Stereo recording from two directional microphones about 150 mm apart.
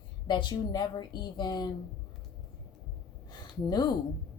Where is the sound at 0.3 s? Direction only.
30° left (ahead or behind).